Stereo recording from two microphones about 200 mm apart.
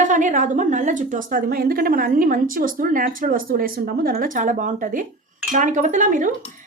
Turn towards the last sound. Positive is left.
turn(degrees=-40)  # may be behind; listen again after turning